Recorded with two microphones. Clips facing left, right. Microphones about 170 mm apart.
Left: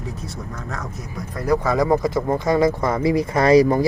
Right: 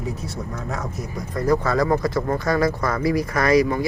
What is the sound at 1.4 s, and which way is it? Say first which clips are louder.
Speech: even; 10° left (ahead or behind).